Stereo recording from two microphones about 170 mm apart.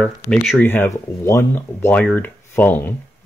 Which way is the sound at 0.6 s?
10° left (ahead or behind).